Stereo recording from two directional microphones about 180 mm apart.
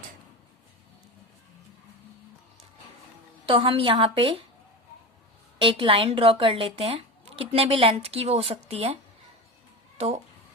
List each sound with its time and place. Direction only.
3.4 s a woman's voice: 30° right (ahead or behind)
5.5 s speech: 30° right (ahead or behind)